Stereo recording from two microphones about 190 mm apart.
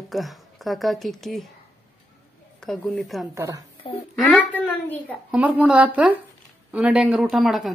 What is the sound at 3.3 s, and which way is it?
Speech, 15° right (ahead or behind).